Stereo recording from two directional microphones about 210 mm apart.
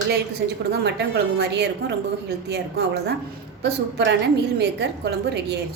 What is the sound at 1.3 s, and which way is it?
A woman's voice, 55° right (ahead or behind).